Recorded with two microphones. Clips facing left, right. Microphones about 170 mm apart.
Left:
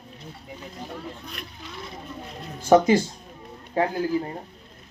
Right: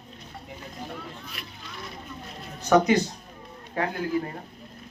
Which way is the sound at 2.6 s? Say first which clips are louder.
Left 3 dB; 30° left (ahead or behind).